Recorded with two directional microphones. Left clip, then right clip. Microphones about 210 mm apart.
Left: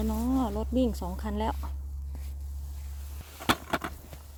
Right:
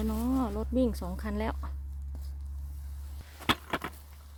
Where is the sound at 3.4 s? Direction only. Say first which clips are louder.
Left 2 dB; 40° left (ahead or behind).